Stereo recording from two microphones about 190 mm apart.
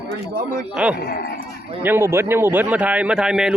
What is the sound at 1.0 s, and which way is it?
Speech, 55° left (ahead or behind).